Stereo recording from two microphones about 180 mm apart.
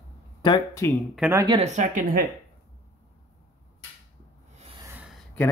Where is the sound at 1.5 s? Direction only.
35° right (ahead or behind).